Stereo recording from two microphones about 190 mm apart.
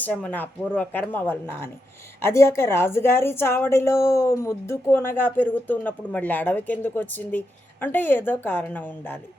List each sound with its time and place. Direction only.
0.0 s a woman's voice: 10° left (ahead or behind)